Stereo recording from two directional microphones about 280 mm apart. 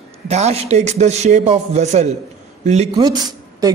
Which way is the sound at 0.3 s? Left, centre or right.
Right.